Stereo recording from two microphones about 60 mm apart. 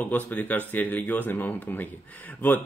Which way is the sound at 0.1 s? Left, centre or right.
Left.